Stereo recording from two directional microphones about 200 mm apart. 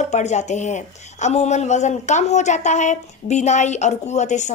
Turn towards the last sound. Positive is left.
turn(degrees=35)  # may be behind; listen again after turning